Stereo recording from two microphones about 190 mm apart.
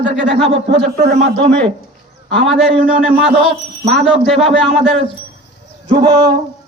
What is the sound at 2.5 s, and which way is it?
Speech, centre (ahead or behind).